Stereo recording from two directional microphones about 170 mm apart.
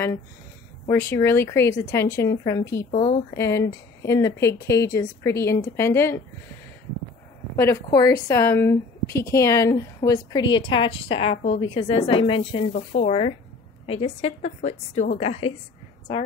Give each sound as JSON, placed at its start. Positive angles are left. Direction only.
{"t": 0.8, "sound": "a woman's voice", "side_deg": 15}
{"t": 7.5, "sound": "a woman's voice", "side_deg": 20}